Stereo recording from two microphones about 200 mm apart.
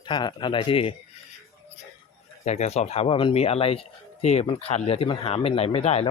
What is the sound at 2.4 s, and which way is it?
Speech, 35° left (ahead or behind).